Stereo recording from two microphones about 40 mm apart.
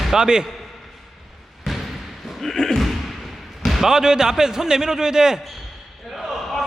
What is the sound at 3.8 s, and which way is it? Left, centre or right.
Speech, centre.